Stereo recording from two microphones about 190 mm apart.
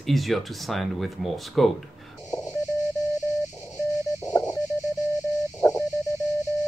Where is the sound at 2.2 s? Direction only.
20° left (ahead or behind).